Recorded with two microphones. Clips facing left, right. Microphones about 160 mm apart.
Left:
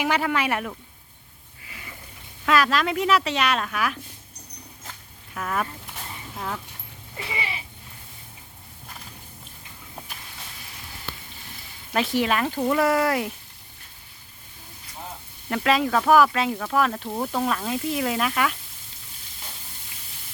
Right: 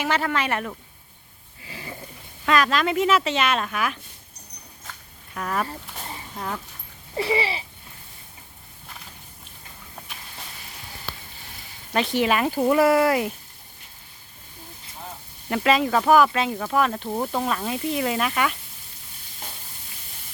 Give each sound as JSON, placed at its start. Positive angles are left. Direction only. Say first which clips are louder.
{"t": 0.0, "sound": "speech", "louder": "left 1 dB", "side_deg": 10}
{"t": 1.6, "sound": "a sound", "louder": "right 6 dB", "side_deg": -30}
{"t": 2.5, "sound": "speech", "louder": "even", "side_deg": 0}
{"t": 5.3, "sound": "speech", "louder": "right 1 dB", "side_deg": 0}
{"t": 7.2, "sound": "a sound", "louder": "right 9 dB", "side_deg": -30}
{"t": 11.9, "sound": "speech", "louder": "right 1 dB", "side_deg": 0}
{"t": 15.4, "sound": "speech", "louder": "right 1 dB", "side_deg": -5}